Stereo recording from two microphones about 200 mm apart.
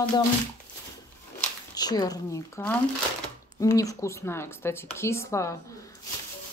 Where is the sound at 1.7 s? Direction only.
20° left (ahead or behind).